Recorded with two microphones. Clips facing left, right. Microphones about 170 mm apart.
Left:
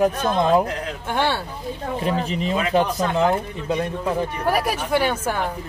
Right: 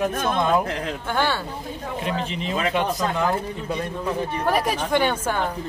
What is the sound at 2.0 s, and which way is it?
Speech, 40° left (ahead or behind).